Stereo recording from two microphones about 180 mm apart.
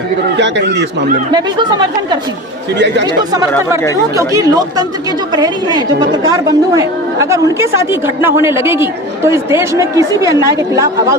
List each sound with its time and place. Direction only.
0.3 s speech: 75° right (ahead or behind)
1.3 s speech: 25° right (ahead or behind)
2.7 s speech: 80° right
4.2 s a woman's voice: 20° right (ahead or behind)